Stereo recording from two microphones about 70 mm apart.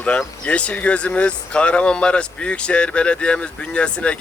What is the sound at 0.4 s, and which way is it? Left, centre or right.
Speech, centre.